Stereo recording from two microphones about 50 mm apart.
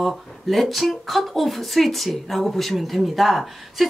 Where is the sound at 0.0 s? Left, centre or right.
Centre.